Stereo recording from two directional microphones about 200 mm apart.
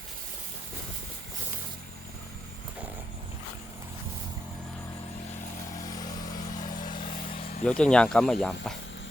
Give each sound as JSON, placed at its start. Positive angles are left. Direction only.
{"t": 5.7, "sound": "vehicle", "side_deg": 20}
{"t": 6.2, "sound": "vehicle", "side_deg": 40}
{"t": 6.8, "sound": "vehicle", "side_deg": 25}
{"t": 7.6, "sound": "speech", "side_deg": 5}